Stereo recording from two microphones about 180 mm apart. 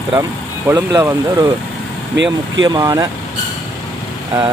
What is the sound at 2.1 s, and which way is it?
Speech, 90° right.